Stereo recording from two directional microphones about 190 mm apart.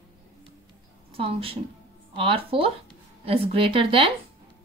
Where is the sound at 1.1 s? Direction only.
30° right (ahead or behind).